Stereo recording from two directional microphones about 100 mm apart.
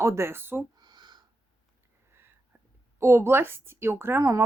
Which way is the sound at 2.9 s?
25° right (ahead or behind).